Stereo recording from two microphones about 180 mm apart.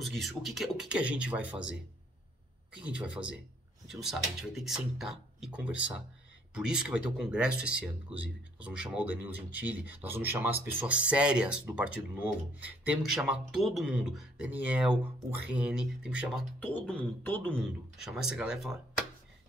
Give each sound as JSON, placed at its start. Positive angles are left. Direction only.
{"t": 0.0, "sound": "speech", "side_deg": 0}
{"t": 2.8, "sound": "speech", "side_deg": -5}
{"t": 16.5, "sound": "speech", "side_deg": 10}